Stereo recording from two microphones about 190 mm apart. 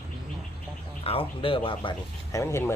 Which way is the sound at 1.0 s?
30° left (ahead or behind).